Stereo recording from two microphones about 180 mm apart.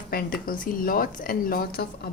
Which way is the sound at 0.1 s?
55° left (ahead or behind).